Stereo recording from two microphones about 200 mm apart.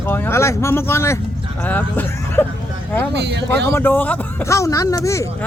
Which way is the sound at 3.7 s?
10° left (ahead or behind).